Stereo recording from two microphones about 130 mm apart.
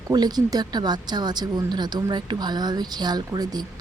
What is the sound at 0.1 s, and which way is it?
Speech, 30° right (ahead or behind).